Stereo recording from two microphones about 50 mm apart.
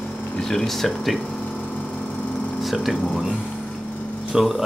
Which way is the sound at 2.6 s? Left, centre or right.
Centre.